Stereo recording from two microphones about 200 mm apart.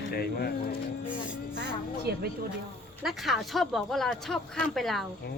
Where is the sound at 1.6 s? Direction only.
50° right (ahead or behind).